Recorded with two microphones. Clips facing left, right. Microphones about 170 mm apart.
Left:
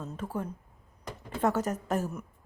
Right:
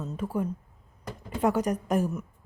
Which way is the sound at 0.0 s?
10° right (ahead or behind).